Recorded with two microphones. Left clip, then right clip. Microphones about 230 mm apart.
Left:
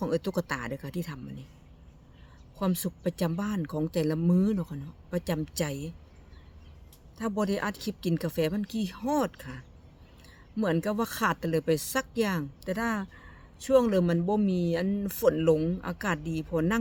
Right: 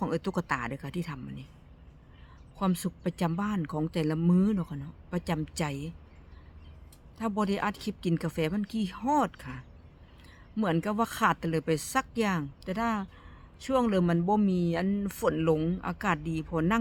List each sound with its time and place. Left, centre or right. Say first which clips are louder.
0.0 s speech: left 2 dB; centre
2.6 s speech: even; centre
7.2 s speech: even; centre